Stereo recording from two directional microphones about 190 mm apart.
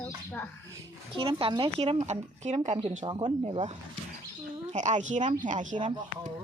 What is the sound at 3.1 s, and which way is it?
Speech, 25° right (ahead or behind).